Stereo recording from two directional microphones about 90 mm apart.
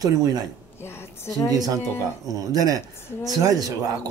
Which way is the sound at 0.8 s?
30° left (ahead or behind).